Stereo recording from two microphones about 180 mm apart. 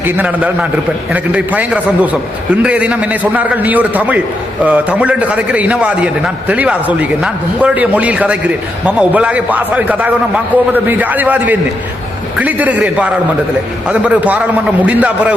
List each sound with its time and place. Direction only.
0.2 s a man's voice: 5° right (ahead or behind)